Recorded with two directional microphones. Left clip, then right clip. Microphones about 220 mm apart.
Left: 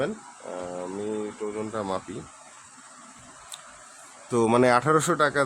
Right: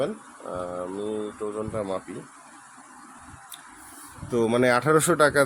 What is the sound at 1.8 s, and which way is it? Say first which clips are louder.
Speech: even; 15° left (ahead or behind).